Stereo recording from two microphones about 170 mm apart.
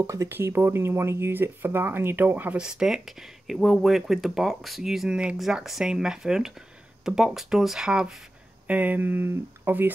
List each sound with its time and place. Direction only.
0.0 s speech: 20° right (ahead or behind)